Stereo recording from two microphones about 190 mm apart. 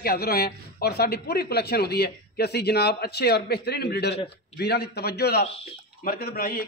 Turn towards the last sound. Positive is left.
turn(degrees=50)  # may be behind; listen again after turning